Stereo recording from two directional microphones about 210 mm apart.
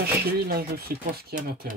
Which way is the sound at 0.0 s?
45° right (ahead or behind).